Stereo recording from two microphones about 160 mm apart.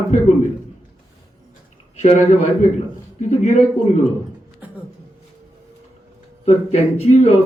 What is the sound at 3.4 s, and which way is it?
Speech, 45° left (ahead or behind).